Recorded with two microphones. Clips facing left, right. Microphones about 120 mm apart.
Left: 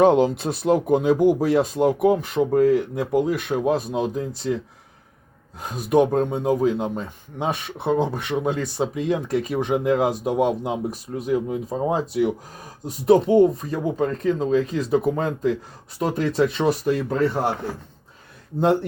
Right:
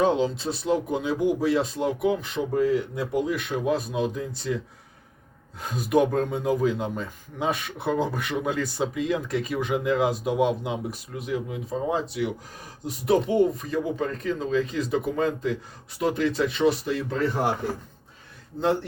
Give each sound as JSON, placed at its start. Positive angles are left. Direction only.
{"t": 0.0, "sound": "speech", "side_deg": 55}
{"t": 5.9, "sound": "speech", "side_deg": 30}
{"t": 9.7, "sound": "speech", "side_deg": 50}